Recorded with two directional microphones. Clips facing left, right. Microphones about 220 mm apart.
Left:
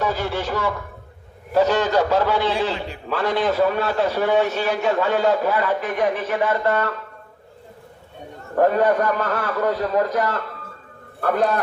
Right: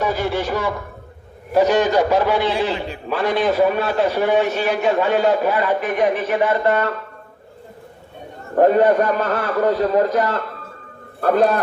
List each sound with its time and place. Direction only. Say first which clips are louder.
0.0 s a man's voice: right 3 dB; 15° right (ahead or behind)
8.5 s a man's voice: right 4 dB; 25° right (ahead or behind)